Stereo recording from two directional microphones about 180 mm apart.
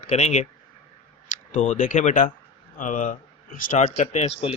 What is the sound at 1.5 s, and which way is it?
A man's voice, 45° left (ahead or behind).